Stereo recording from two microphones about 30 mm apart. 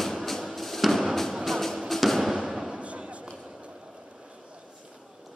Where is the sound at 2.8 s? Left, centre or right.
Right.